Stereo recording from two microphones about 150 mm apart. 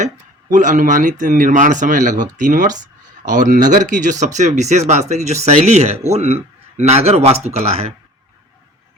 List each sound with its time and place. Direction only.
0.5 s speech: 60° right (ahead or behind)